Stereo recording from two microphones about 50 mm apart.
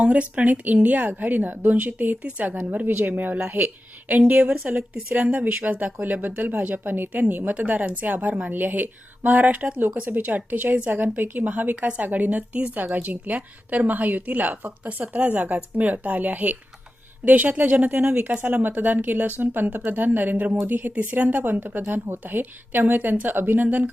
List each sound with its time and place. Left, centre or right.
0.0 s a woman's voice: right
7.5 s a woman's voice: right
11.4 s a woman's voice: right
20.3 s a woman's voice: right